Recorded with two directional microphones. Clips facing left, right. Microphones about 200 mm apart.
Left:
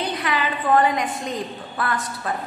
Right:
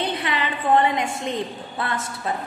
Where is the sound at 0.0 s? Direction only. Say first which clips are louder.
Left 1 dB; 25° right (ahead or behind).